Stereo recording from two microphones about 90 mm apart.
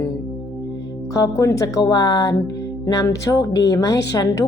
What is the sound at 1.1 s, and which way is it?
Speech, 40° left (ahead or behind).